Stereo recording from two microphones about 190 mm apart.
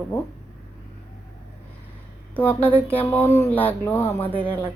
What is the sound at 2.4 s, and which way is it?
Speech, 10° left (ahead or behind).